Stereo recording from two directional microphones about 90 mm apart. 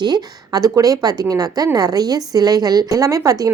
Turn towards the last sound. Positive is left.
turn(degrees=-40)  # may be behind; listen again after turning